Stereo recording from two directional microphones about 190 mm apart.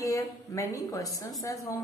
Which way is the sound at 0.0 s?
15° left (ahead or behind).